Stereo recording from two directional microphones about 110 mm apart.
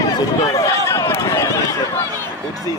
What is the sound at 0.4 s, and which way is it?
Run, 30° left (ahead or behind).